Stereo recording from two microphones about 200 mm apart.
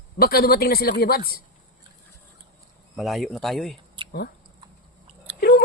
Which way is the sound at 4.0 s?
25° right (ahead or behind).